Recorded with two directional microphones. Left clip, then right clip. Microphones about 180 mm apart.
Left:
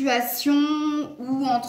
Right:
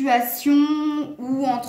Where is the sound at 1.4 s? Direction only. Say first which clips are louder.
Even; 55° right (ahead or behind).